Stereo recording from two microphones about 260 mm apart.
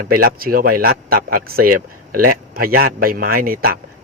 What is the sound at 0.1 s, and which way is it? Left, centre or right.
A man's voice, right.